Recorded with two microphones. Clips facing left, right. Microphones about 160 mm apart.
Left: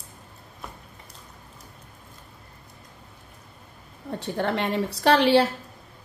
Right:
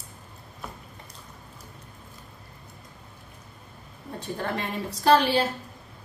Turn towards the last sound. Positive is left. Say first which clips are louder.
# left 2 dB
turn(degrees=70)  # may be behind; listen again after turning